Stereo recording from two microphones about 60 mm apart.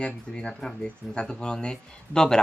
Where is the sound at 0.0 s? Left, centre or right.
Centre.